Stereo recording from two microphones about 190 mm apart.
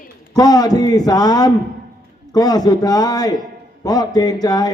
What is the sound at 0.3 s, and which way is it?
A man's voice, 20° left (ahead or behind).